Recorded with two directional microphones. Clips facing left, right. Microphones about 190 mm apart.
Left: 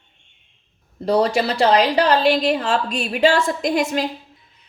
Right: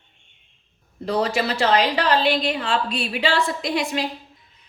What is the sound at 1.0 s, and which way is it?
A woman's voice, 35° left (ahead or behind).